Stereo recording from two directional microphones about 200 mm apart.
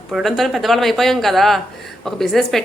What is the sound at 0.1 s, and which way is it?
A woman's voice, centre (ahead or behind).